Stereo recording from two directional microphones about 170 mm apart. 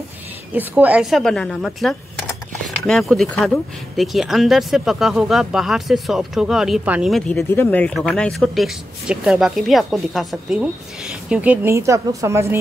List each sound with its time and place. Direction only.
0.5 s speech: 10° right (ahead or behind)
1.2 s speech: 5° left (ahead or behind); by 12.5 s 15° right (ahead or behind)